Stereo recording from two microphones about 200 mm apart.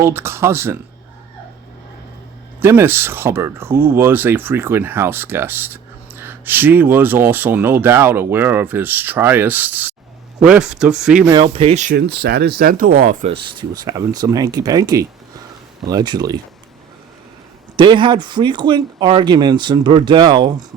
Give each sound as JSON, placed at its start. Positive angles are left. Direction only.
{"t": 0.0, "sound": "speech", "side_deg": -15}
{"t": 2.6, "sound": "speech", "side_deg": -10}
{"t": 11.3, "sound": "speech", "side_deg": -25}
{"t": 11.9, "sound": "speech", "side_deg": -55}
{"t": 13.2, "sound": "speech", "side_deg": -25}
{"t": 17.7, "sound": "speech", "side_deg": -25}